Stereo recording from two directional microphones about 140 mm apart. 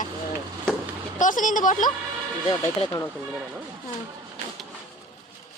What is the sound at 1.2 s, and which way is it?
Speech, 70° left (ahead or behind).